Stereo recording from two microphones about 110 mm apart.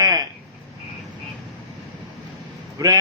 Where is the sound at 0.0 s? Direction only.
35° right (ahead or behind).